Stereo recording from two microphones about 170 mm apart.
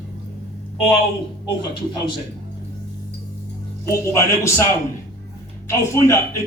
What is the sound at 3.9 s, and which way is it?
Speech, 15° left (ahead or behind).